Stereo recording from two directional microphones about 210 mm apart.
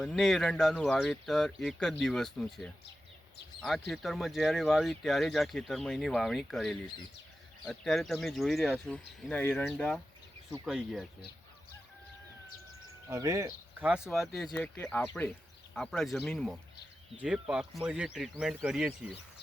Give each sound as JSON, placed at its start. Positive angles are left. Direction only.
{"t": 0.0, "sound": "speech", "side_deg": 5}
{"t": 13.1, "sound": "speech", "side_deg": -15}
{"t": 13.8, "sound": "speech", "side_deg": -5}